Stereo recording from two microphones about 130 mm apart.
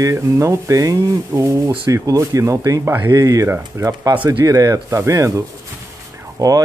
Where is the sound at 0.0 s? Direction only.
25° right (ahead or behind).